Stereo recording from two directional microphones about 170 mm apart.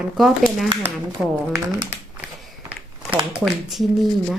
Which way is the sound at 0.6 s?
20° right (ahead or behind).